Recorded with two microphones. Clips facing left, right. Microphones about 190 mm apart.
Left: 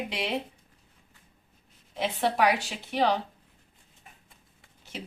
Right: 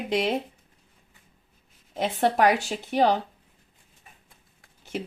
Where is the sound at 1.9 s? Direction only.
45° right (ahead or behind).